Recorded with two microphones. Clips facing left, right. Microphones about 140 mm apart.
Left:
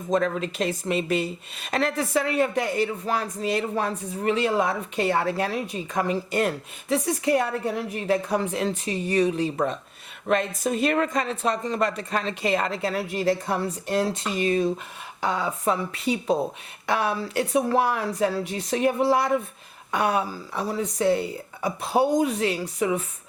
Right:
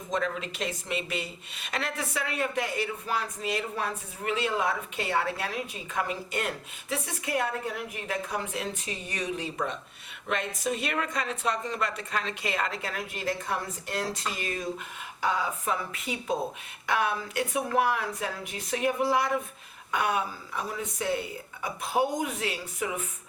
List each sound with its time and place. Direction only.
0.1 s speech: 40° left (ahead or behind)